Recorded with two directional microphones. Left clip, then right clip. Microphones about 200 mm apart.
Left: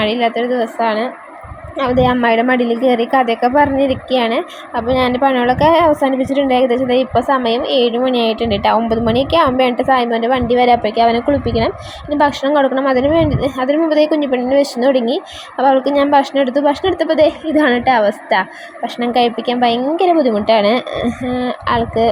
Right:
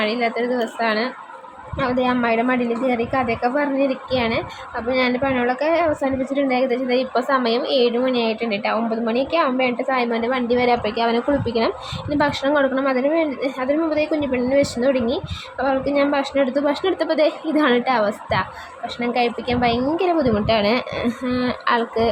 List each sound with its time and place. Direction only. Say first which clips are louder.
0.0 s a woman's voice: left 5 dB; 20° left (ahead or behind)